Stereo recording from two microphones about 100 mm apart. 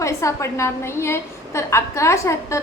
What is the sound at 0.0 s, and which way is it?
A woman's voice, 30° left (ahead or behind).